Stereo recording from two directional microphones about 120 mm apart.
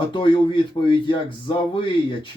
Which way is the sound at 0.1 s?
45° left (ahead or behind).